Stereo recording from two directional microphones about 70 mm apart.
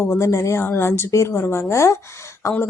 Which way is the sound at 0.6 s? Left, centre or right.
Left.